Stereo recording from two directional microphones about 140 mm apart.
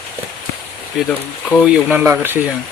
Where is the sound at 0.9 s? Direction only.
Centre (ahead or behind).